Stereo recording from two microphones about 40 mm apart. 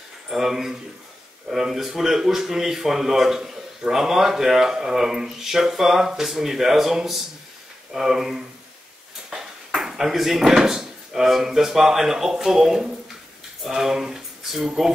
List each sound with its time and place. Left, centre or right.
0.3 s speech: centre
9.3 s ping: centre
9.8 s speech: centre